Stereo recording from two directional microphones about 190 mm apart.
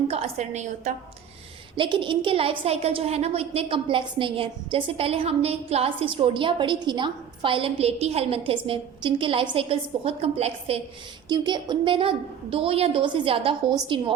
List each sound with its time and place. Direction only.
0.1 s a woman's voice: 35° right (ahead or behind)
1.7 s a woman's voice: 25° right (ahead or behind)